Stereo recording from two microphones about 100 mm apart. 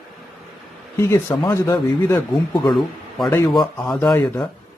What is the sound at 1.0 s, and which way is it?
Speech, 30° left (ahead or behind).